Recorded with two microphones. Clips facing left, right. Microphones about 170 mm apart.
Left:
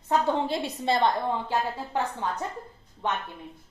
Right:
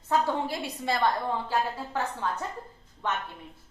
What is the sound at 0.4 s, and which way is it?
A woman's voice, 25° left (ahead or behind).